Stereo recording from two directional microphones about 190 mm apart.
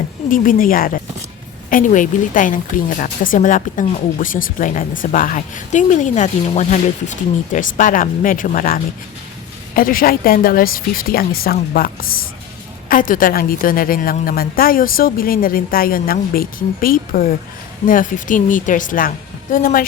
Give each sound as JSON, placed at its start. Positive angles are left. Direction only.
{"t": 0.3, "sound": "a woman's voice", "side_deg": 45}